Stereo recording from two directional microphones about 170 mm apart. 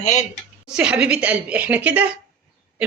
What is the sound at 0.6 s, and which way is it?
Speech, 5° right (ahead or behind).